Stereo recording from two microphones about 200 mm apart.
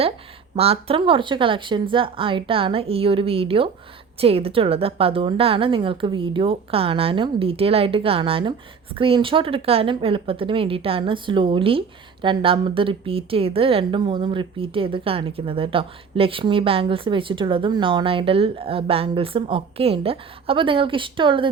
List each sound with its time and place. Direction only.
0.5 s a woman's voice: 30° right (ahead or behind)